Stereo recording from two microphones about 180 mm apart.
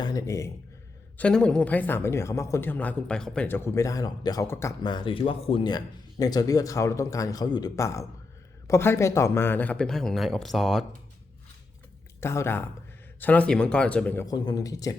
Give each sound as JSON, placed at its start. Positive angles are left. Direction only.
{"t": 0.0, "sound": "speech", "side_deg": 20}
{"t": 1.2, "sound": "speech", "side_deg": 5}
{"t": 4.8, "sound": "speech", "side_deg": 25}
{"t": 12.2, "sound": "speech", "side_deg": 15}
{"t": 14.3, "sound": "speech", "side_deg": 25}